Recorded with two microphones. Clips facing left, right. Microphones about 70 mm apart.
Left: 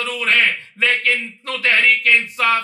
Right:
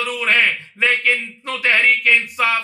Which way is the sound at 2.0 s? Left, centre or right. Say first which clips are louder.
Even; centre.